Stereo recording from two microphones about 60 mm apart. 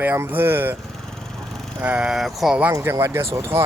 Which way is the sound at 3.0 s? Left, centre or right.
Right.